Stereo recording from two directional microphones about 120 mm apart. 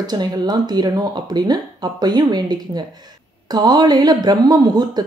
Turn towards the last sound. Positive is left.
turn(degrees=-35)  # may be behind; listen again after turning